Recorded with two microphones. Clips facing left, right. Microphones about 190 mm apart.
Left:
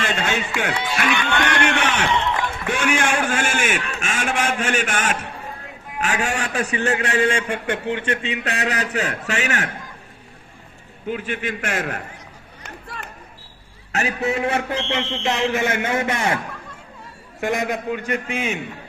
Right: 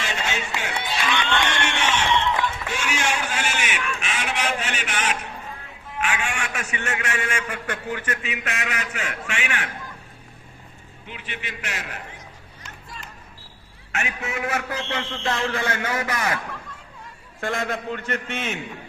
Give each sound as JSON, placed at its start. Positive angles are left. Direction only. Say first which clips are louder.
{"t": 0.0, "sound": "a sound", "louder": "left 5 dB", "side_deg": 55}
{"t": 4.0, "sound": "a man's voice", "louder": "left 5 dB", "side_deg": 45}
{"t": 11.0, "sound": "a man's voice", "louder": "left 11 dB", "side_deg": 45}
{"t": 12.6, "sound": "music", "louder": "left 6 dB", "side_deg": 60}
{"t": 13.9, "sound": "a man's voice", "louder": "left 7 dB", "side_deg": 35}
{"t": 17.4, "sound": "a man's voice", "louder": "left 4 dB", "side_deg": 15}